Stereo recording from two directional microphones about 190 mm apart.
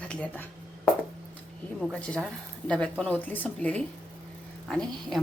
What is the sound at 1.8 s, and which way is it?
A woman's voice, centre (ahead or behind).